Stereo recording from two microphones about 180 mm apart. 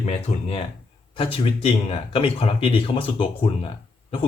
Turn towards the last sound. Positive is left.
turn(degrees=30)  # may be behind; listen again after turning